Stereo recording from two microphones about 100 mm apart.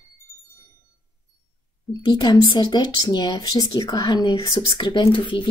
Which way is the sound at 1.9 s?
45° left (ahead or behind).